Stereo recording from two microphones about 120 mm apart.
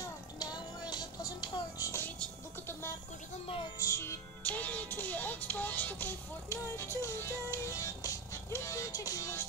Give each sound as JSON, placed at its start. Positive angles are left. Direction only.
{"t": 0.4, "sound": "music", "side_deg": 35}
{"t": 3.8, "sound": "music", "side_deg": 25}
{"t": 4.4, "sound": "music", "side_deg": 10}